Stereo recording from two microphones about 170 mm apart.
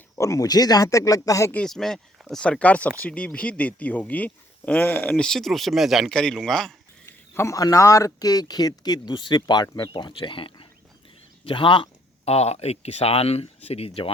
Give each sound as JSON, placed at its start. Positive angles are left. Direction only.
{"t": 0.2, "sound": "a man's voice", "side_deg": 20}
{"t": 1.5, "sound": "speech", "side_deg": 5}
{"t": 7.0, "sound": "a man's voice", "side_deg": 15}